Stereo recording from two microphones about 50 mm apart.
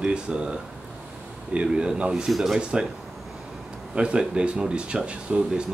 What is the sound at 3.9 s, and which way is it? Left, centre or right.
Speech, right.